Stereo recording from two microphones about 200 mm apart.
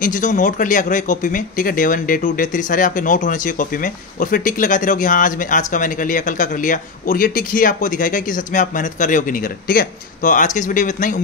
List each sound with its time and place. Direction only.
0.0 s speech: 40° left (ahead or behind)